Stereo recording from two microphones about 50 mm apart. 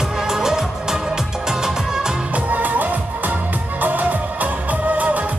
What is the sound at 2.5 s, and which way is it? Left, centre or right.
Music, right.